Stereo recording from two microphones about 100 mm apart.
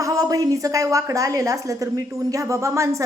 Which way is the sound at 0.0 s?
35° right (ahead or behind).